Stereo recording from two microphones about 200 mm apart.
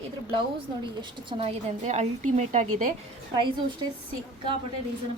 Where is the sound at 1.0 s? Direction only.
30° right (ahead or behind).